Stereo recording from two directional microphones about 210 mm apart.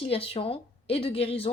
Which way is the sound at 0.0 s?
25° left (ahead or behind).